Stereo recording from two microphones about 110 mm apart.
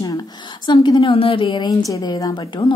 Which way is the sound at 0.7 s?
45° left (ahead or behind).